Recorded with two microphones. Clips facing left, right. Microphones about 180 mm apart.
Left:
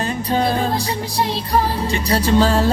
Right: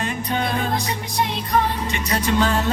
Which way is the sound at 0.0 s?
35° left (ahead or behind).